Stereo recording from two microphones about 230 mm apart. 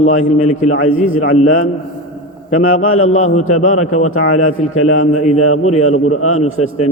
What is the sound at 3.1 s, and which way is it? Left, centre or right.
Speech, left.